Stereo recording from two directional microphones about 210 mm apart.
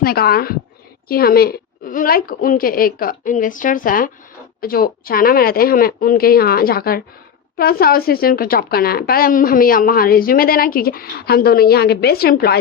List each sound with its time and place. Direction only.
0.0 s speech: 45° left (ahead or behind)